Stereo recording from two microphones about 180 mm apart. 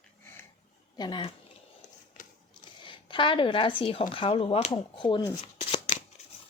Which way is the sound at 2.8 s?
25° left (ahead or behind).